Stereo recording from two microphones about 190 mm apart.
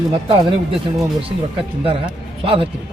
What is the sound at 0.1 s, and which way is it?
Speech, 30° right (ahead or behind).